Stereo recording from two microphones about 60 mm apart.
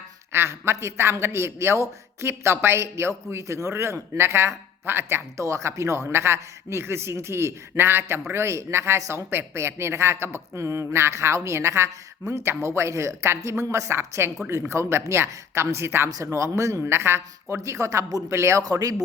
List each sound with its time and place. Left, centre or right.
0.3 s a man's voice: right
5.4 s a man's voice: right
16.2 s speech: right
16.8 s a man's voice: right
17.6 s speech: right
18.6 s speech: right